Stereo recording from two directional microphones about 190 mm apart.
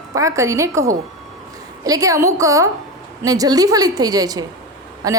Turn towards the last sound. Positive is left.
turn(degrees=-20)  # may be behind; listen again after turning